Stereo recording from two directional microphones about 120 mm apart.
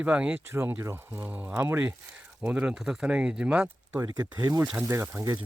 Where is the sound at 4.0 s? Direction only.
30° right (ahead or behind).